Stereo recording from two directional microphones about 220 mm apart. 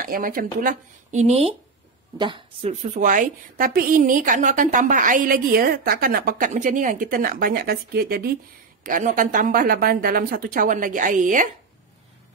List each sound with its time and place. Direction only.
0.0 s a woman's voice: 40° right (ahead or behind); by 2.7 s 20° right (ahead or behind)
2.7 s a woman's voice: 35° right (ahead or behind)